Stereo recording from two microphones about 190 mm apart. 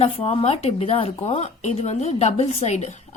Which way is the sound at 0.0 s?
30° left (ahead or behind).